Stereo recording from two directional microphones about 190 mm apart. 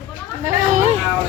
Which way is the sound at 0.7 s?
35° right (ahead or behind).